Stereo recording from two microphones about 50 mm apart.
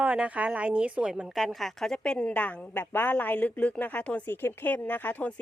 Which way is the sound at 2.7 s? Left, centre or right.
Left.